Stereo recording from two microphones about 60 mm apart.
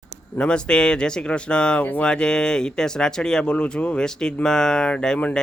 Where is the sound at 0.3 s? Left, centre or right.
Centre.